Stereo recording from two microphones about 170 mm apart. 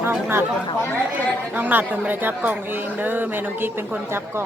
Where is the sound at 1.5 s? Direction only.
10° right (ahead or behind).